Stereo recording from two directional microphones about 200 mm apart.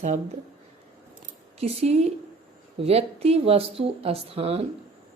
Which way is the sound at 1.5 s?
30° right (ahead or behind).